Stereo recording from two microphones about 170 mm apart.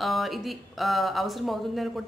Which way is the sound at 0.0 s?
Centre (ahead or behind).